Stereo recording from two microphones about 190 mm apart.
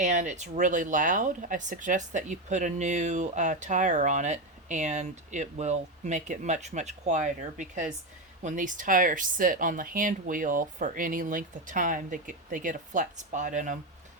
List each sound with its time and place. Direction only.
0.0 s speech: 40° right (ahead or behind)